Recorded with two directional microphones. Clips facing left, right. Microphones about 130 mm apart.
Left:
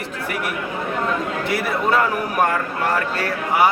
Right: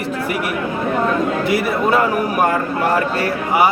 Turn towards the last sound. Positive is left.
turn(degrees=-10)  # may be behind; listen again after turning